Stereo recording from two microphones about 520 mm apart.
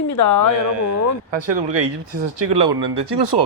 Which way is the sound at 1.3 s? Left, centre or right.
Right.